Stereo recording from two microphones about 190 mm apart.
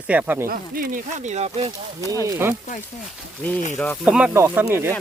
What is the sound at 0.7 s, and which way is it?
Speech, 45° right (ahead or behind).